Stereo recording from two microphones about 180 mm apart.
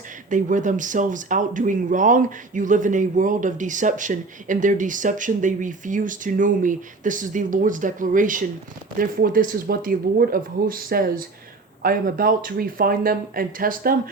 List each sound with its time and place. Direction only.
0.3 s speech: 45° right (ahead or behind)